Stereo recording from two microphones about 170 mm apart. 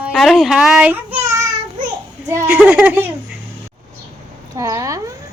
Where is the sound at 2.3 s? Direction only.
10° right (ahead or behind).